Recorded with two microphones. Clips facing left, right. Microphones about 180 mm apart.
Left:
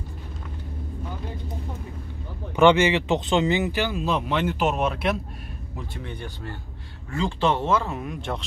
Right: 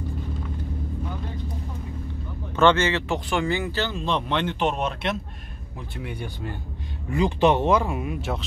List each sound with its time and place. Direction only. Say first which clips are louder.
2.5 s speech: left 2 dB; 15° left (ahead or behind)
6.0 s speech: right 2 dB; 10° right (ahead or behind)